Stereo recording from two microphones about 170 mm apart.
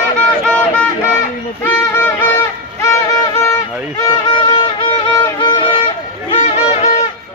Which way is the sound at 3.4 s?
15° left (ahead or behind).